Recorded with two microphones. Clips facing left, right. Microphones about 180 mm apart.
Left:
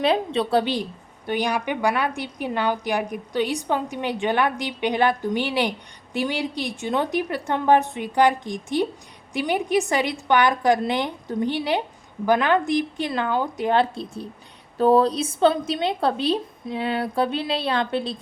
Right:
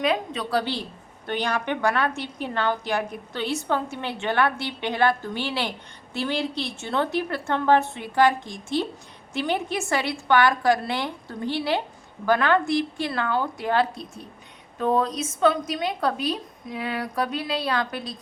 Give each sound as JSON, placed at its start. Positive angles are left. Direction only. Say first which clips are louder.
{"t": 0.0, "sound": "a woman's voice", "louder": "left 4 dB", "side_deg": 30}